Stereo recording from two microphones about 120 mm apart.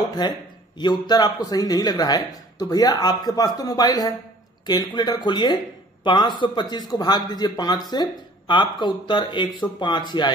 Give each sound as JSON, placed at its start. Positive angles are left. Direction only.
{"t": 0.2, "sound": "a man's voice", "side_deg": 35}